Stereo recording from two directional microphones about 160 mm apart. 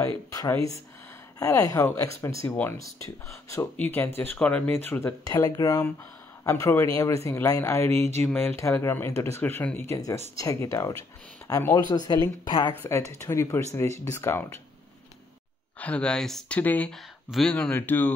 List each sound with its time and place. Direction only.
0.3 s speech: 20° left (ahead or behind)
15.8 s speech: 5° left (ahead or behind)